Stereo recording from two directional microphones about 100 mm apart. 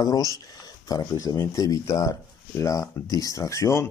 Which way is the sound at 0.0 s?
40° left (ahead or behind).